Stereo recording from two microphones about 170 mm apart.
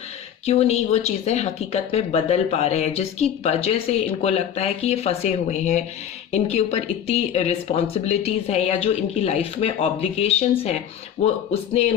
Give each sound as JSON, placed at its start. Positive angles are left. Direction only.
{"t": 0.4, "sound": "speech", "side_deg": 40}